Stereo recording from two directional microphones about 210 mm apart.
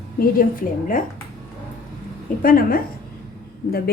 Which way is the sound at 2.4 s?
45° left (ahead or behind).